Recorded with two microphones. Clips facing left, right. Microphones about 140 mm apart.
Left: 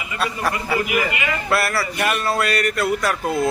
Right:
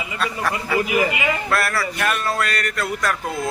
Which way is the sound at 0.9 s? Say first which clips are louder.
Right 2 dB; 25° right (ahead or behind).